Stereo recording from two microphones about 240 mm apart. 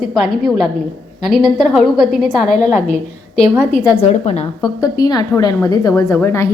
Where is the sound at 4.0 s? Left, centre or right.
Left.